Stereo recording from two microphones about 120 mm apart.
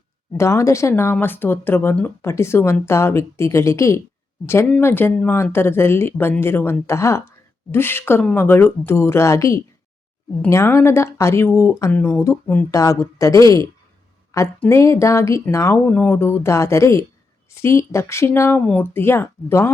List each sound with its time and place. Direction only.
0.3 s a woman's voice: 25° left (ahead or behind)